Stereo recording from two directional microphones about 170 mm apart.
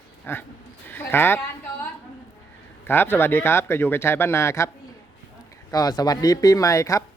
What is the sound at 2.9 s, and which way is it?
A man's voice, 15° left (ahead or behind).